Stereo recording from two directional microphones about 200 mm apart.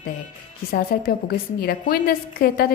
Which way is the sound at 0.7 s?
50° left (ahead or behind).